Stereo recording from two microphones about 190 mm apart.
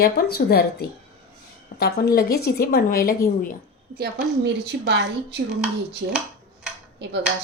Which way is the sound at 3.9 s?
65° right (ahead or behind).